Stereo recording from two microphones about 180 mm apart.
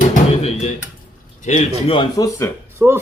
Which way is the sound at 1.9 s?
20° left (ahead or behind).